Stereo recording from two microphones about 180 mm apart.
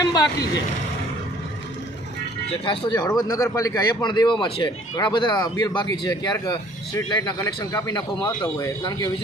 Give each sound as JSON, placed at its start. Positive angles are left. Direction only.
{"t": 0.0, "sound": "a man's voice", "side_deg": 20}
{"t": 2.5, "sound": "a man's voice", "side_deg": 30}